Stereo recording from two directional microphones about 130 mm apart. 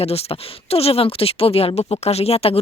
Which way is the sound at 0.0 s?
50° left (ahead or behind).